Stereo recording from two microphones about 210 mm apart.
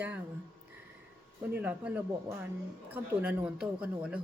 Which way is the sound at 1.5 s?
10° right (ahead or behind).